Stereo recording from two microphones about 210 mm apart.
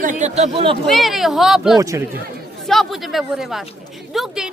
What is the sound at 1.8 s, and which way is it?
Speech, 15° right (ahead or behind).